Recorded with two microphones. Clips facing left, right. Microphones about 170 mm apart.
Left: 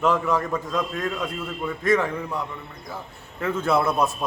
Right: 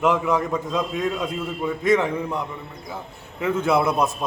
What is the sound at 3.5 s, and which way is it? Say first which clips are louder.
Speech: right 1 dB; 15° right (ahead or behind).